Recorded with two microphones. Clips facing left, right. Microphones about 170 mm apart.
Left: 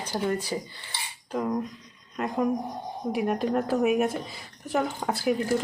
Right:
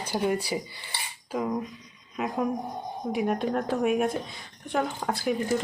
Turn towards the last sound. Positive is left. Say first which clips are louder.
# left 1 dB
turn(degrees=0)  # may be behind; listen again after turning